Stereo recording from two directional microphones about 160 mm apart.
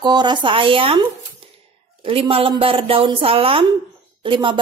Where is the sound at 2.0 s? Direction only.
35° right (ahead or behind).